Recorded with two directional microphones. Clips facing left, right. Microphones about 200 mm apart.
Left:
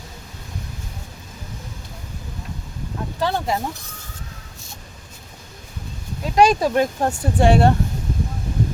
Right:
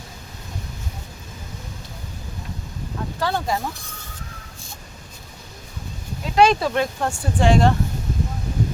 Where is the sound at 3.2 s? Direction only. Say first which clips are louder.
Left 1 dB; 20° left (ahead or behind).